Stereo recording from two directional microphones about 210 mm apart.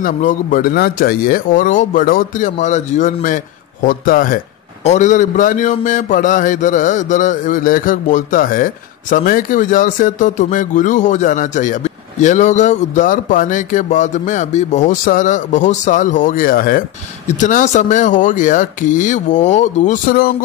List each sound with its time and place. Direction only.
0.0 s speech: 40° left (ahead or behind)